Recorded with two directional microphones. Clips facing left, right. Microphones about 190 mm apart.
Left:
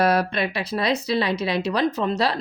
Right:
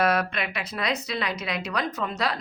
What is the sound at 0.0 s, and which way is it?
Speech, 35° left (ahead or behind).